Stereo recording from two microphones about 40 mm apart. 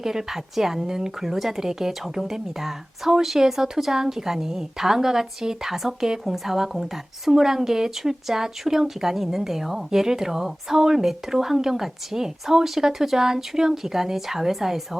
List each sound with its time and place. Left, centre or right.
0.0 s a woman's voice: centre